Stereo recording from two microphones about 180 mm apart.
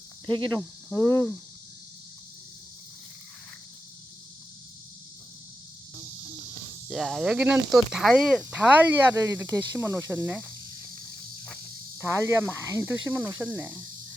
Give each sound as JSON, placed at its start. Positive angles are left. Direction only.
{"t": 0.5, "sound": "speech", "side_deg": 10}
{"t": 6.8, "sound": "speech", "side_deg": 0}
{"t": 8.5, "sound": "speech", "side_deg": -10}
{"t": 11.9, "sound": "speech", "side_deg": -15}